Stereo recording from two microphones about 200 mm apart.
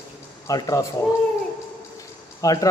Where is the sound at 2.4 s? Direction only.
15° left (ahead or behind).